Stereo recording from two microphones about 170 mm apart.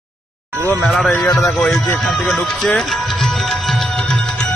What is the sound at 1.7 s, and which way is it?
Music, 5° left (ahead or behind).